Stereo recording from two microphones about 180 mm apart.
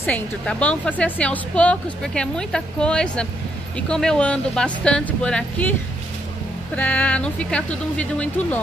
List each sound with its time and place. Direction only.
0.0 s a woman's voice: 10° left (ahead or behind)